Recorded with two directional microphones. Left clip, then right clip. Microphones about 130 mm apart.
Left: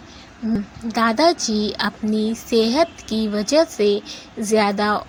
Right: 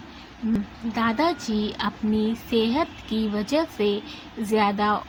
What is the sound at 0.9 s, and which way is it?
Speech, 55° left (ahead or behind).